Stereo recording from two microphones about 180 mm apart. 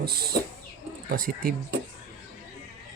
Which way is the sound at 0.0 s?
60° right (ahead or behind).